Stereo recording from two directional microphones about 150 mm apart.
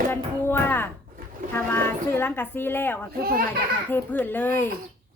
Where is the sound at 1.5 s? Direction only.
15° left (ahead or behind).